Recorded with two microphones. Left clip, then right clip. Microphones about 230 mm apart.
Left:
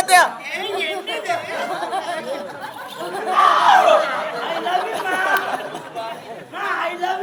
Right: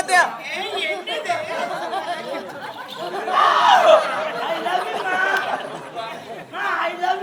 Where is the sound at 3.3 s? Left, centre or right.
Centre.